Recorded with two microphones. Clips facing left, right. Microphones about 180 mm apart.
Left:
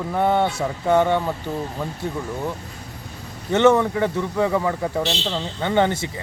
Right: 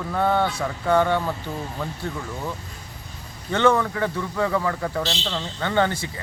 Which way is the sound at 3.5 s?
20° left (ahead or behind).